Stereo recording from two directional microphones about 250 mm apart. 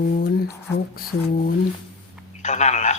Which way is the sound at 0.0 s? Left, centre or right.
Left.